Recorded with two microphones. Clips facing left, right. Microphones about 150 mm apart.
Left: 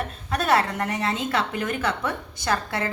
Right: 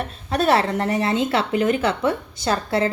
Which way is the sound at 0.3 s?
30° right (ahead or behind).